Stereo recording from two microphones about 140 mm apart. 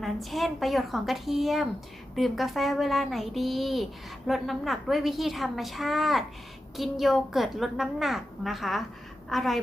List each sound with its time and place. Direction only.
0.0 s a woman's voice: centre (ahead or behind)